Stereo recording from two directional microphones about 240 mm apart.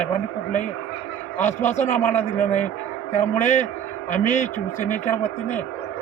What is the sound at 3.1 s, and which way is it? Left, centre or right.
A man's voice, left.